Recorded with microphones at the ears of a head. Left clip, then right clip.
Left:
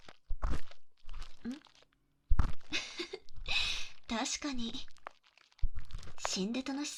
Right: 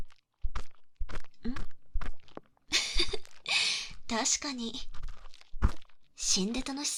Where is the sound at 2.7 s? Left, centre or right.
Right.